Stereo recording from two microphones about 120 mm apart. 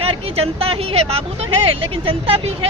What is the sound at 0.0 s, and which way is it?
Speech, 55° right (ahead or behind).